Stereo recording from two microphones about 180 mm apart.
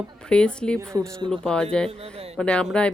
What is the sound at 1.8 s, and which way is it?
Speech, 35° right (ahead or behind).